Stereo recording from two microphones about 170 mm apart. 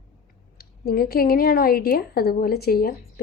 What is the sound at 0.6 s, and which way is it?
A woman's voice, 60° left (ahead or behind).